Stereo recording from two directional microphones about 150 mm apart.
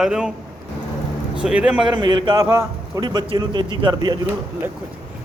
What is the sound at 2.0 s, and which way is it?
Speech, 30° right (ahead or behind).